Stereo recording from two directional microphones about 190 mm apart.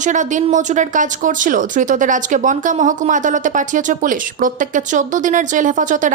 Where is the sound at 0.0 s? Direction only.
40° right (ahead or behind).